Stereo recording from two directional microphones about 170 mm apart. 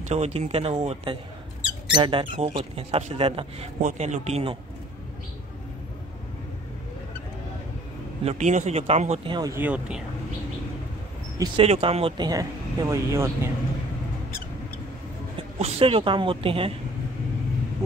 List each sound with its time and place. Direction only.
0.1 s speech: 40° right (ahead or behind)
8.2 s speech: 40° right (ahead or behind); by 9.6 s 25° right (ahead or behind)
9.6 s speech: 5° right (ahead or behind)
11.3 s speech: 25° right (ahead or behind)
11.6 s speech: 35° right (ahead or behind)
12.3 s speech: 20° right (ahead or behind)
15.6 s speech: 35° right (ahead or behind)